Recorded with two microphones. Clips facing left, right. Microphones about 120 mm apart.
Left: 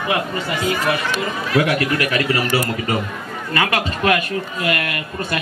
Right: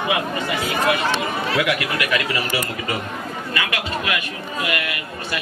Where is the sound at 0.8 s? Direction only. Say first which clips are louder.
Right 1 dB; 25° right (ahead or behind).